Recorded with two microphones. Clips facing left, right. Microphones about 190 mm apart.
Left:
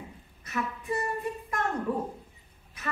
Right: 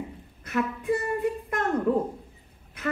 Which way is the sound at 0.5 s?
60° right (ahead or behind).